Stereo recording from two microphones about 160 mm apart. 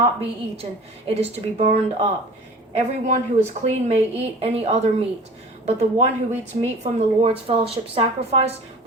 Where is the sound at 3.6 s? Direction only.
40° right (ahead or behind).